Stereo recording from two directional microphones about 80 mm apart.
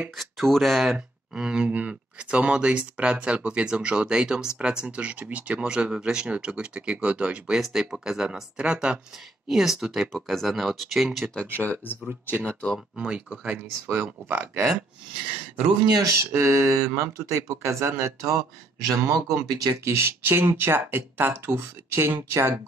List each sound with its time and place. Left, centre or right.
0.2 s speech: centre
0.9 s speech: centre
11.5 s speech: left
12.4 s speech: centre
12.9 s speech: centre
13.8 s speech: right
16.0 s speech: right
18.9 s speech: right
19.9 s speech: right